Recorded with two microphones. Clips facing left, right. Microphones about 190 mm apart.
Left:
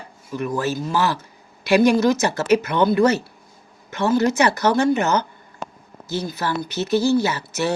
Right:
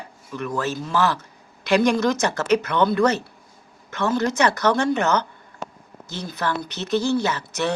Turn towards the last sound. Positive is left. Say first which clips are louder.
# left 1 dB
turn(degrees=5)  # may be behind; listen again after turning